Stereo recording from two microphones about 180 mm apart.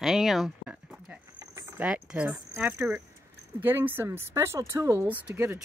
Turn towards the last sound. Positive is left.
turn(degrees=-10)  # may be behind; listen again after turning